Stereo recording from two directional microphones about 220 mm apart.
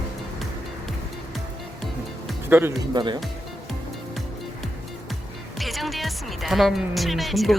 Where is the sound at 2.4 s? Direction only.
10° right (ahead or behind).